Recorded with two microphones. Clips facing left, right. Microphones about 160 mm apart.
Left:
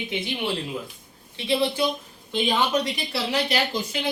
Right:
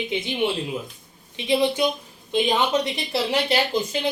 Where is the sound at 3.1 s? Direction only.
30° right (ahead or behind).